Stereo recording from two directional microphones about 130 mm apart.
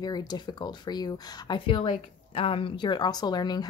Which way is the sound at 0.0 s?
30° left (ahead or behind).